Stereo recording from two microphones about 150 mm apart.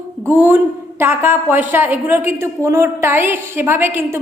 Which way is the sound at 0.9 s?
15° right (ahead or behind).